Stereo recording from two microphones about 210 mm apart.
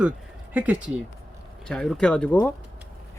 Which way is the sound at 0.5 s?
5° right (ahead or behind).